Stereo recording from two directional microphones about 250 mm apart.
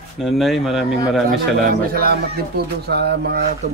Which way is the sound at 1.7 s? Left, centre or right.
Right.